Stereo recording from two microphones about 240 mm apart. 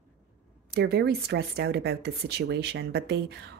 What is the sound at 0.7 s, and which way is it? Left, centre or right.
A woman's voice, right.